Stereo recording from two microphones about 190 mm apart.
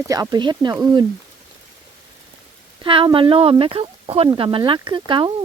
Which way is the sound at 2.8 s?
25° right (ahead or behind).